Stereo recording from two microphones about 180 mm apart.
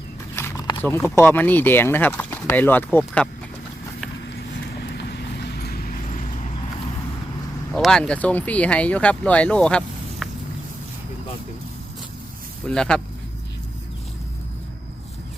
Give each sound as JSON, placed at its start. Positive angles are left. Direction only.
{"t": 0.3, "sound": "a sound", "side_deg": 15}
{"t": 0.8, "sound": "speech", "side_deg": 10}
{"t": 4.8, "sound": "vehicle", "side_deg": 65}
{"t": 7.7, "sound": "speech", "side_deg": 5}
{"t": 12.6, "sound": "speech", "side_deg": 5}